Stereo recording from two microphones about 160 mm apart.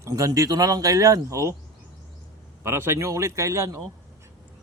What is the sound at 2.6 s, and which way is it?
Speech, 15° right (ahead or behind).